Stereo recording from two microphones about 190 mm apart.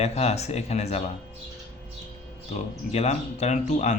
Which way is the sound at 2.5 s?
35° left (ahead or behind).